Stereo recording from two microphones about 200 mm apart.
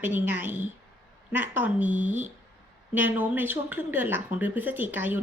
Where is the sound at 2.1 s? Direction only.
35° right (ahead or behind).